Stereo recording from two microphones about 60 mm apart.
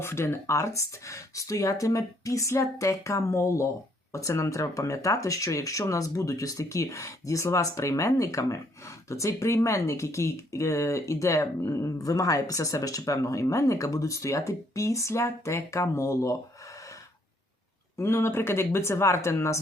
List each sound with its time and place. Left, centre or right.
0.0 s speech: left
17.9 s speech: left